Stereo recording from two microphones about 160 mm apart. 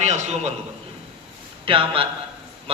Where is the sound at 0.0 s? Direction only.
45° right (ahead or behind).